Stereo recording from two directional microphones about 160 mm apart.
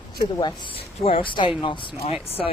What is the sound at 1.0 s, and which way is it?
Speech, 35° left (ahead or behind).